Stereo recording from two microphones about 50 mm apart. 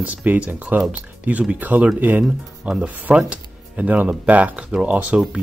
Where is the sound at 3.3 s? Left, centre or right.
Right.